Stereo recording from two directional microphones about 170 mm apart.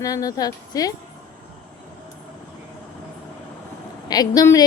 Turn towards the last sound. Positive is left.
turn(degrees=20)  # may be behind; listen again after turning